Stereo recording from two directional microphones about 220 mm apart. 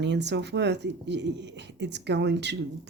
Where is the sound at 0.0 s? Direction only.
50° right (ahead or behind).